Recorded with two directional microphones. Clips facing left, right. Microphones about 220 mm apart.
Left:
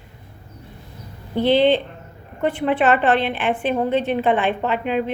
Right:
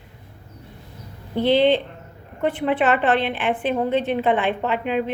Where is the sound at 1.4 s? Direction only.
20° right (ahead or behind).